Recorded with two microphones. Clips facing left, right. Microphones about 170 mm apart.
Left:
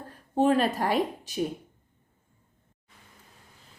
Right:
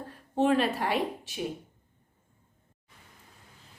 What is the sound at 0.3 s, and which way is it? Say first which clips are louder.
A woman's voice: left 2 dB; 40° left (ahead or behind).